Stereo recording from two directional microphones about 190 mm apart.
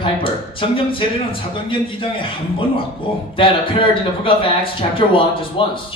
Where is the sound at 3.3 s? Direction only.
25° left (ahead or behind).